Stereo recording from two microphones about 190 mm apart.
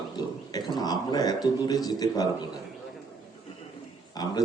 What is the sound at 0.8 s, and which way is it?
A man's voice, 20° left (ahead or behind).